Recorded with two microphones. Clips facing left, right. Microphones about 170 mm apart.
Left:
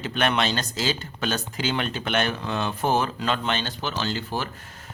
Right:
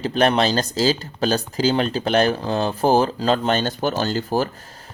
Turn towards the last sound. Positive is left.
turn(degrees=-40)  # may be behind; listen again after turning